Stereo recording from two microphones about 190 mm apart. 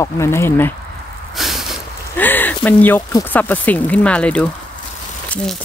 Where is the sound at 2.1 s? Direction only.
10° left (ahead or behind).